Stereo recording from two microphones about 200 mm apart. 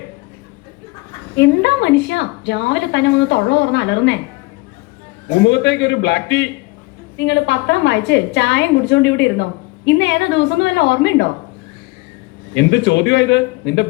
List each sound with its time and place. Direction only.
1.4 s a woman's voice: 60° left (ahead or behind)
5.5 s a woman's voice: 60° left (ahead or behind)
12.5 s a woman's voice: 65° left (ahead or behind)